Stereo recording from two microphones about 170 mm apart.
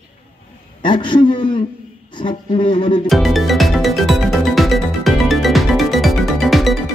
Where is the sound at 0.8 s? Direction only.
30° left (ahead or behind).